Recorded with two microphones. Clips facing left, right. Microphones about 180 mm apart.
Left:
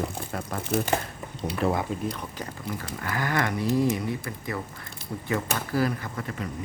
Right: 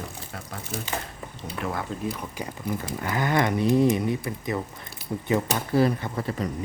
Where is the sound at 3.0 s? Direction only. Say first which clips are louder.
Right 3 dB; 20° right (ahead or behind).